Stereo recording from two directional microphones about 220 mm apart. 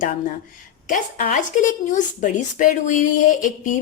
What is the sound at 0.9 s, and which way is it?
Speech, 35° left (ahead or behind).